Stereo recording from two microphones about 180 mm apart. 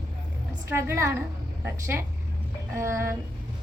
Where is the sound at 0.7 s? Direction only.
15° right (ahead or behind).